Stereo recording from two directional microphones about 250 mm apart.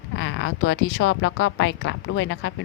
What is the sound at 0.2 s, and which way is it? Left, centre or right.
Speech, left.